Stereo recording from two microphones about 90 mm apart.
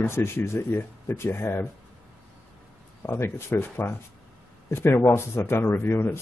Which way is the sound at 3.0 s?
25° left (ahead or behind).